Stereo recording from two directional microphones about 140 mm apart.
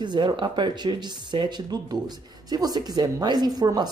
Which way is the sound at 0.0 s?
35° right (ahead or behind).